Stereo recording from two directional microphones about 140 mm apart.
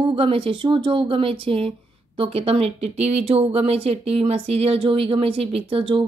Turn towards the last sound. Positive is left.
turn(degrees=-40)  # may be behind; listen again after turning